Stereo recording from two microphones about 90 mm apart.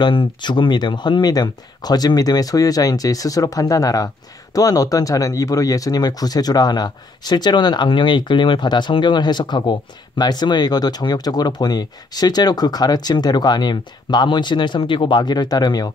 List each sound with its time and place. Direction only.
0.0 s speech: 65° left (ahead or behind); by 15.9 s 45° left (ahead or behind)